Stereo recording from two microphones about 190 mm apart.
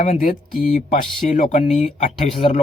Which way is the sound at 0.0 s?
40° left (ahead or behind).